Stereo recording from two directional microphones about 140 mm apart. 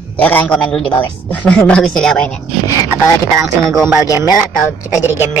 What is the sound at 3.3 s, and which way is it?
Speech, 20° right (ahead or behind).